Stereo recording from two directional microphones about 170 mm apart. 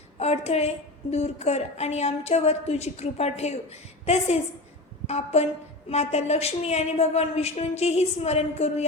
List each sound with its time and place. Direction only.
0.2 s a woman's voice: 40° left (ahead or behind)